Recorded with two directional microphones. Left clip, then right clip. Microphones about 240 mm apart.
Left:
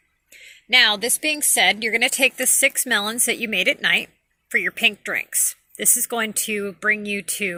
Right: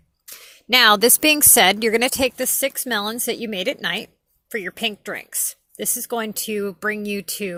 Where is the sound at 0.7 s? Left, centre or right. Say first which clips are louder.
Right 3 dB; right.